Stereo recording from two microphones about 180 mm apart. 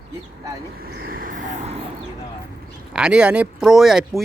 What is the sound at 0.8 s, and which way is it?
Vehicle, 60° right (ahead or behind).